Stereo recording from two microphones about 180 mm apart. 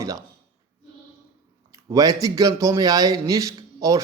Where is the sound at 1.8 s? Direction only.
20° right (ahead or behind).